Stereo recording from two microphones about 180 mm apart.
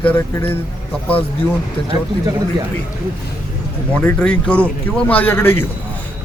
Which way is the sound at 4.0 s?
5° left (ahead or behind).